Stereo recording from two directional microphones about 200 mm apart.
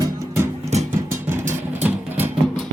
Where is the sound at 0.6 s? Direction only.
35° right (ahead or behind).